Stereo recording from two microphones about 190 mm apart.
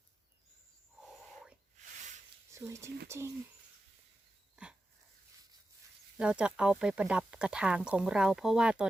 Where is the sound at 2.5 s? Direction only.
15° right (ahead or behind).